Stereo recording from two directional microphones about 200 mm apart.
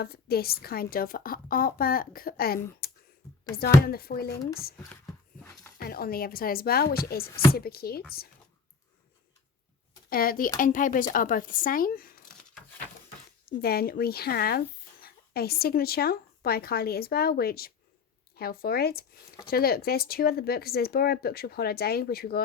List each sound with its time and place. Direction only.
0.0 s speech: 50° left (ahead or behind)
2.8 s clicking: 50° left (ahead or behind)
3.5 s speech: 50° left (ahead or behind)
5.4 s a sound: 10° left (ahead or behind)
5.8 s speech: 50° left (ahead or behind)
10.1 s speech: 45° left (ahead or behind)
13.4 s a woman's voice: 50° left (ahead or behind)